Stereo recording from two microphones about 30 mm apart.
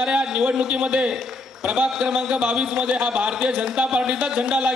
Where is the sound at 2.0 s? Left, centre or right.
Right.